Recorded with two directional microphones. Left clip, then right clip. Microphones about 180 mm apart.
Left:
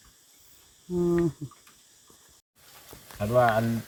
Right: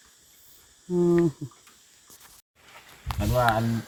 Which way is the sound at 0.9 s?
20° right (ahead or behind).